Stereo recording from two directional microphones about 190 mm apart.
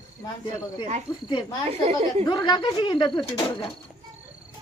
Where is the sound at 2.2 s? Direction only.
25° left (ahead or behind).